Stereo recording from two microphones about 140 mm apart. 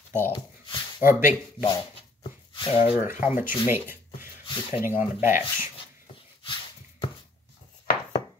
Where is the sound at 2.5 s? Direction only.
35° left (ahead or behind).